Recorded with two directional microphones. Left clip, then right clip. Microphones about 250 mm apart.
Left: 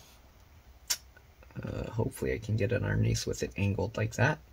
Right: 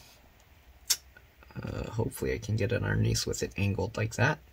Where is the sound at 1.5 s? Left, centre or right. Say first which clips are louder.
Even; right.